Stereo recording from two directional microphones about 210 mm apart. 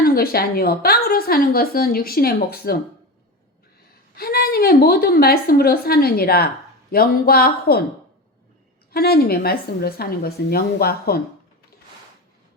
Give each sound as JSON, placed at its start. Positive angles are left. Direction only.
{"t": 0.0, "sound": "a woman's voice", "side_deg": 45}
{"t": 4.1, "sound": "a woman's voice", "side_deg": 45}
{"t": 8.9, "sound": "a woman's voice", "side_deg": 45}